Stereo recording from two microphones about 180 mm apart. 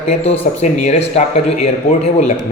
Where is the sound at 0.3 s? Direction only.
40° left (ahead or behind).